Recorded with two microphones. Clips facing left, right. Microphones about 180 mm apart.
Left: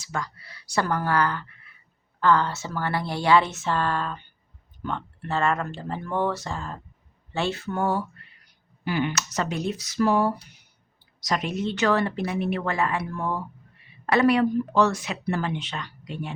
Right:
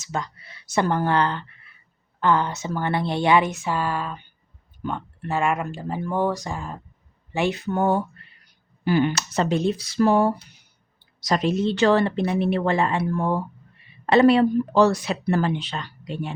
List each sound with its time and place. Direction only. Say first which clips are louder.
0.0 s speech: right 3 dB; 20° right (ahead or behind)
8.8 s speech: right 5 dB; 35° right (ahead or behind)